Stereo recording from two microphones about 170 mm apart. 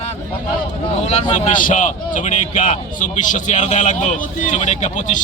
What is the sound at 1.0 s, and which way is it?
A man's voice, 40° left (ahead or behind).